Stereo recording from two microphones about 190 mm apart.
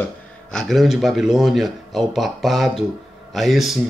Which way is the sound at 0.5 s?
Centre (ahead or behind).